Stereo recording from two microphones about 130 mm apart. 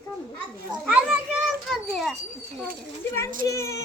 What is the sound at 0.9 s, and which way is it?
Children playing, 10° right (ahead or behind).